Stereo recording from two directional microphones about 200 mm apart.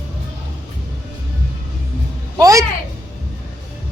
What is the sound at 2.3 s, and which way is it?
Speech, 15° right (ahead or behind).